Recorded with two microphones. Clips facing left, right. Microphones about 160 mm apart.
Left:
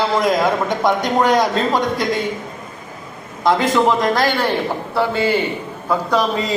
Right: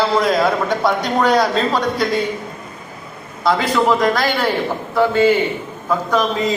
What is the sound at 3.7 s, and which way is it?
A man's voice, 15° left (ahead or behind).